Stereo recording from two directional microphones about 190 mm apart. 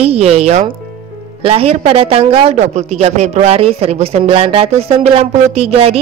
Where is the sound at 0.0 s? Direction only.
30° right (ahead or behind).